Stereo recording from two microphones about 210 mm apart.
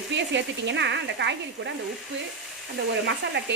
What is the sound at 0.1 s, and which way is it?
Speech, 60° right (ahead or behind).